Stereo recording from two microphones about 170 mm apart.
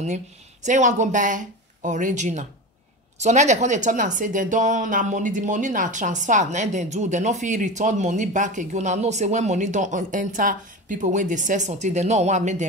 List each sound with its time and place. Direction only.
0.7 s a woman's voice: 45° right (ahead or behind)